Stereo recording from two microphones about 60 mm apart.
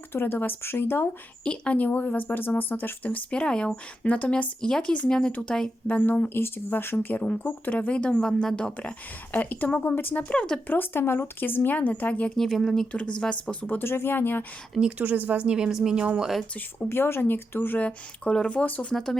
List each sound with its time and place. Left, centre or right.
0.1 s speech: left
1.5 s speech: left
5.9 s speech: left
10.2 s speech: centre
10.7 s speech: left
12.4 s speech: centre
12.9 s speech: centre
13.7 s speech: left
14.8 s speech: centre
15.0 s speech: right
16.6 s speech: left
17.7 s speech: left